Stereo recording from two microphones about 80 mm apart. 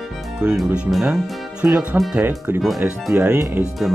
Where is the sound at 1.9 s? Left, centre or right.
Centre.